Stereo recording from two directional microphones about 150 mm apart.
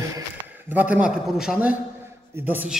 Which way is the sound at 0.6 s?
10° right (ahead or behind).